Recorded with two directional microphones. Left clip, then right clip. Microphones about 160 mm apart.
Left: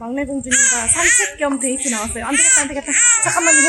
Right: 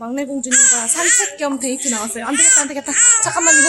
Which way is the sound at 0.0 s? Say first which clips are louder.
Even; centre (ahead or behind).